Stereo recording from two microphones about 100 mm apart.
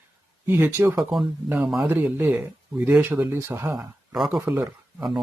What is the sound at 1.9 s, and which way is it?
Speech, 20° right (ahead or behind).